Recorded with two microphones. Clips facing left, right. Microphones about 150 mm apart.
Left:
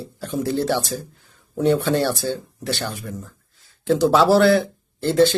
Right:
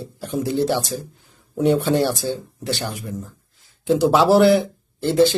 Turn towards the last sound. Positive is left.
turn(degrees=-15)  # may be behind; listen again after turning